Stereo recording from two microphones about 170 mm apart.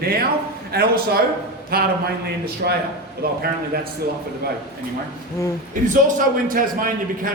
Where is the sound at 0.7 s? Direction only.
65° right (ahead or behind).